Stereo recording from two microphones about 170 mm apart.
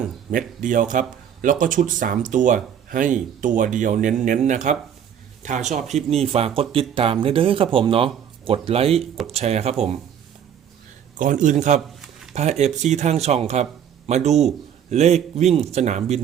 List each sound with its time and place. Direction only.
0.3 s a man's voice: 50° right (ahead or behind)
11.2 s speech: 50° right (ahead or behind)